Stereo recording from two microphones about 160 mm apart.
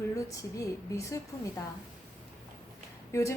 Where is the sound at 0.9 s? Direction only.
20° left (ahead or behind).